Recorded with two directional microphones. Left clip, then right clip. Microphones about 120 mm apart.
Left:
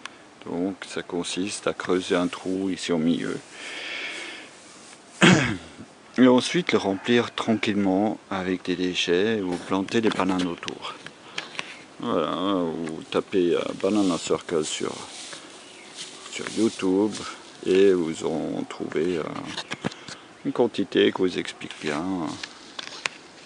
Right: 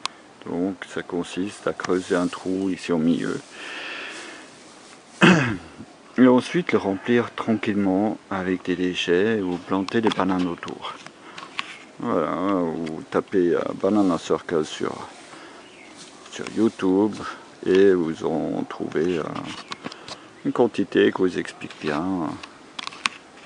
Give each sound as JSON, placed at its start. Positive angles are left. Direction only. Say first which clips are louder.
{"t": 0.5, "sound": "a sound", "louder": "right 2 dB", "side_deg": 10}
{"t": 0.8, "sound": "speech", "louder": "right 1 dB", "side_deg": 5}
{"t": 5.2, "sound": "throat clearing", "louder": "right 1 dB", "side_deg": 5}
{"t": 6.1, "sound": "speech", "louder": "right 1 dB", "side_deg": 5}
{"t": 12.0, "sound": "speech", "louder": "right 2 dB", "side_deg": 0}
{"t": 16.6, "sound": "speech", "louder": "right 2 dB", "side_deg": -5}
{"t": 19.1, "sound": "speech", "louder": "right 2 dB", "side_deg": 15}
{"t": 20.5, "sound": "speech", "louder": "right 2 dB", "side_deg": 0}